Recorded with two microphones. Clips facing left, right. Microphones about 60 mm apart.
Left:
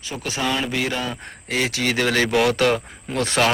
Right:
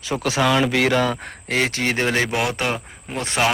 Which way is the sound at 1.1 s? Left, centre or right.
Right.